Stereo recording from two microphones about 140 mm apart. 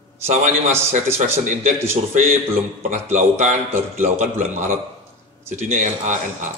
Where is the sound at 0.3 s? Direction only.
55° right (ahead or behind).